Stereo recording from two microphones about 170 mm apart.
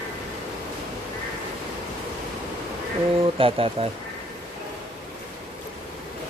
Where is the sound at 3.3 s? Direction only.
30° right (ahead or behind).